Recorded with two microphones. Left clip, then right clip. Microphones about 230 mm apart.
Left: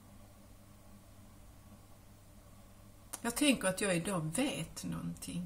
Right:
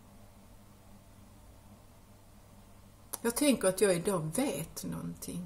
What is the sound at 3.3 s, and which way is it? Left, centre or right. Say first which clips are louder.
A woman's voice: right 3 dB; left.